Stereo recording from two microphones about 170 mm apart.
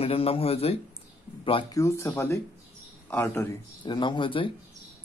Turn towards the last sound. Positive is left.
turn(degrees=30)  # may be behind; listen again after turning